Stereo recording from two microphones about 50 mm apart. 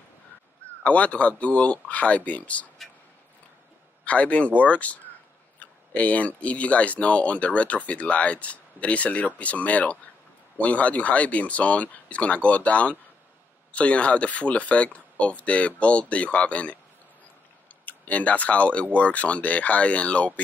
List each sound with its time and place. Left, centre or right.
0.8 s speech: left
4.0 s speech: left
17.8 s speech: left